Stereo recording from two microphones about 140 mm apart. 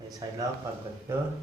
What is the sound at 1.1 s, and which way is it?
Speech, 20° right (ahead or behind).